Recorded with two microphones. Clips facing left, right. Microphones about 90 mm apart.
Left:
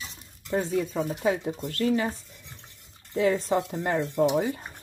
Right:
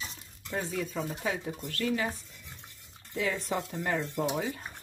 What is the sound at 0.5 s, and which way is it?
Speech, 25° left (ahead or behind).